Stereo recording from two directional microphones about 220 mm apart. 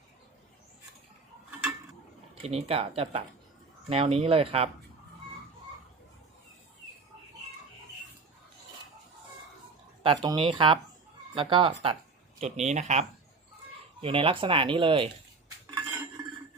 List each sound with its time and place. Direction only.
2.3 s speech: 25° right (ahead or behind)
10.0 s speech: 20° right (ahead or behind)